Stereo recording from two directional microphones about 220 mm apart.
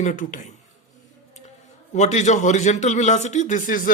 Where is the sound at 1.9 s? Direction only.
30° left (ahead or behind).